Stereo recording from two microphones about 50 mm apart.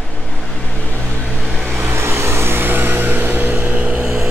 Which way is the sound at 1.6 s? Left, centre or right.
Right.